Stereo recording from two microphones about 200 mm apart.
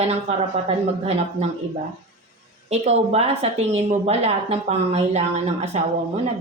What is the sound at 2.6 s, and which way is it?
A woman's voice, 30° right (ahead or behind).